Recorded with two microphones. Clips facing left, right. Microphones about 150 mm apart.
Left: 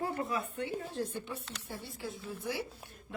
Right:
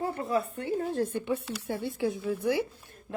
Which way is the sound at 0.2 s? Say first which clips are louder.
Right 5 dB; 35° right (ahead or behind).